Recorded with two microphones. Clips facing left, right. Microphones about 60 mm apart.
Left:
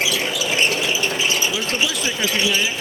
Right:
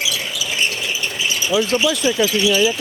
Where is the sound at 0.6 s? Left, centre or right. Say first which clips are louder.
Left 3 dB; left.